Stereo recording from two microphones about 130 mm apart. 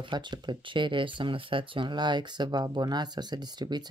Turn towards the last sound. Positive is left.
turn(degrees=-35)  # may be behind; listen again after turning